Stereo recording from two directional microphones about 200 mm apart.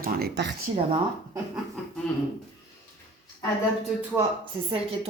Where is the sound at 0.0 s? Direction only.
50° right (ahead or behind).